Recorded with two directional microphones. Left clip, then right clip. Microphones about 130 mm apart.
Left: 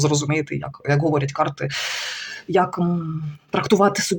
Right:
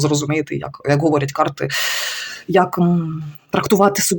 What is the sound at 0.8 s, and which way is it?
Speech, 35° right (ahead or behind).